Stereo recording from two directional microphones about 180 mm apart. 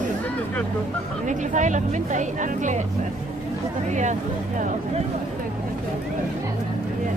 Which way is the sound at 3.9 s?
40° right (ahead or behind).